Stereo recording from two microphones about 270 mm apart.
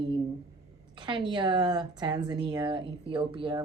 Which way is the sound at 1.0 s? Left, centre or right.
Centre.